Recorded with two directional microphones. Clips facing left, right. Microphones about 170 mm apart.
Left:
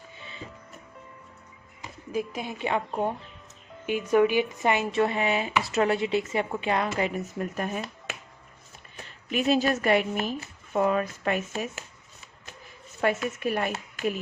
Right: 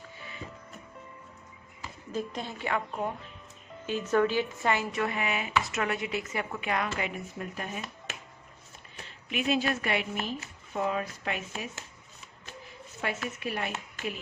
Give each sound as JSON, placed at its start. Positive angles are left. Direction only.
{"t": 0.2, "sound": "music", "side_deg": 25}
{"t": 1.8, "sound": "speech", "side_deg": 10}
{"t": 3.8, "sound": "speech", "side_deg": 15}
{"t": 7.3, "sound": "a woman's voice", "side_deg": 50}
{"t": 9.3, "sound": "a woman's voice", "side_deg": 40}
{"t": 10.8, "sound": "a woman's voice", "side_deg": 55}
{"t": 13.0, "sound": "a woman's voice", "side_deg": 50}